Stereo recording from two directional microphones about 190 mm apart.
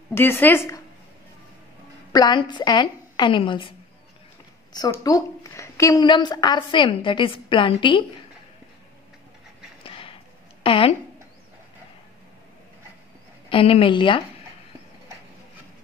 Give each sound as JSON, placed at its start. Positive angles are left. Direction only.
{"t": 0.1, "sound": "speech", "side_deg": 10}
{"t": 2.1, "sound": "a woman's voice", "side_deg": 25}
{"t": 4.7, "sound": "a woman's voice", "side_deg": 20}
{"t": 9.8, "sound": "a sound", "side_deg": 30}
{"t": 10.6, "sound": "speech", "side_deg": 30}
{"t": 13.5, "sound": "a woman's voice", "side_deg": 30}